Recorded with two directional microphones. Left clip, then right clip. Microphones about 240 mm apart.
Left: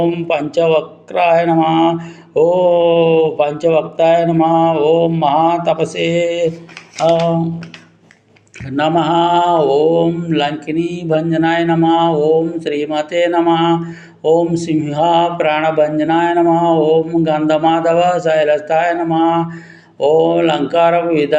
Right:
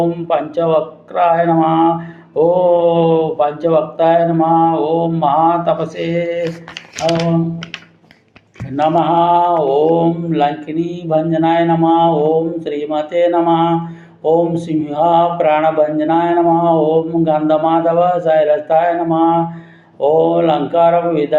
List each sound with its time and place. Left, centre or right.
0.0 s speech: left
8.7 s speech: left